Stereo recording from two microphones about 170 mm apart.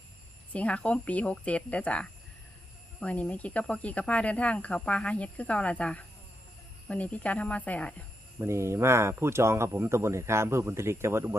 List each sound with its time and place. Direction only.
0.5 s speech: 5° left (ahead or behind)
8.4 s speech: 15° right (ahead or behind)